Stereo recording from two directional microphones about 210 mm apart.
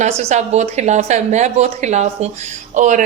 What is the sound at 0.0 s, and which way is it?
Speech, 30° right (ahead or behind).